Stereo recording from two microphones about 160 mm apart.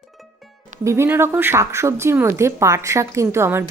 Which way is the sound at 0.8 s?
15° right (ahead or behind).